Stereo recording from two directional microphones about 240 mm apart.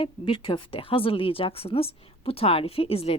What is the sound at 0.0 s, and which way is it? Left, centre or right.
A woman's voice, centre.